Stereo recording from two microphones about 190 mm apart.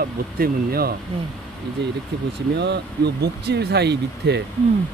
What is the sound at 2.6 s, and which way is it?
Speech, 60° right (ahead or behind).